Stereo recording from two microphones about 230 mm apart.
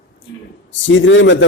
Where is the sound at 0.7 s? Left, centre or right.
Left.